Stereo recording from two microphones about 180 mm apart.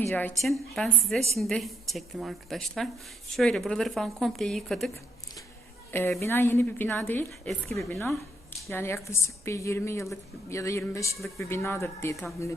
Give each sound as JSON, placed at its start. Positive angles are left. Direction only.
{"t": 0.0, "sound": "speech", "side_deg": 10}
{"t": 6.1, "sound": "a woman's voice", "side_deg": 15}
{"t": 8.7, "sound": "a woman's voice", "side_deg": 15}